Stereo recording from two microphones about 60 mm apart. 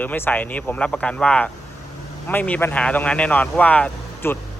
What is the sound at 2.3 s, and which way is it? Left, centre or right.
Speech, left.